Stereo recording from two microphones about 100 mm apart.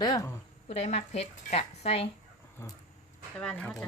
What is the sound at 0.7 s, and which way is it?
Speech, 90° left.